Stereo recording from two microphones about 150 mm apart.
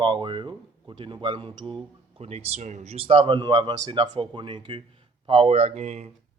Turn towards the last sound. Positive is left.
turn(degrees=-45)  # may be behind; listen again after turning